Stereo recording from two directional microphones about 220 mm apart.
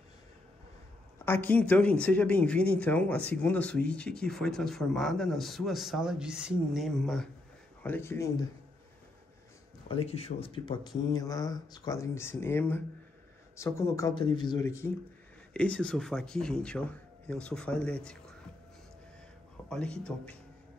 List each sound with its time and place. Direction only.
1.2 s speech: 10° left (ahead or behind)
9.8 s speech: 25° left (ahead or behind); by 18.3 s 5° left (ahead or behind)
19.7 s speech: 5° left (ahead or behind)